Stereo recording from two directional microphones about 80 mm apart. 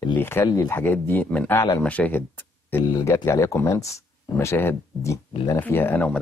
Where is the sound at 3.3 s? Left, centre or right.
Left.